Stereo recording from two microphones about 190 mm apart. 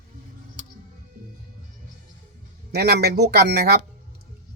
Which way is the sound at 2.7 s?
55° right (ahead or behind).